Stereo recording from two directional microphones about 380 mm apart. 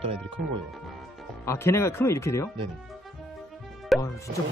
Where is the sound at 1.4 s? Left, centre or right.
Centre.